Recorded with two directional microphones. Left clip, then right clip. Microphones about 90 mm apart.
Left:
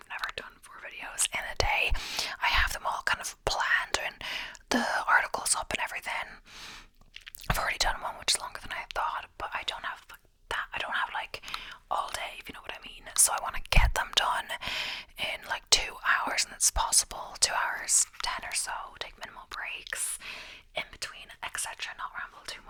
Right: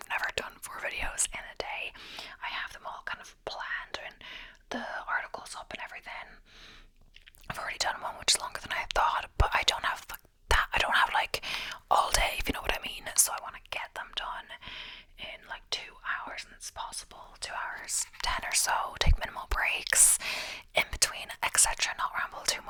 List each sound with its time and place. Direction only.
0.3 s whispering: 40° right (ahead or behind)
1.3 s whispering: 25° left (ahead or behind); by 6.2 s 50° left (ahead or behind)
7.4 s whispering: 20° left (ahead or behind)
7.8 s whispering: centre (ahead or behind); by 9.5 s 20° right (ahead or behind)
9.5 s whispering: 30° right (ahead or behind)
13.1 s whispering: 5° left (ahead or behind)
13.4 s whispering: 30° left (ahead or behind)
17.8 s whispering: 10° left (ahead or behind)
18.2 s whispering: 10° right (ahead or behind)
18.7 s whispering: 35° right (ahead or behind)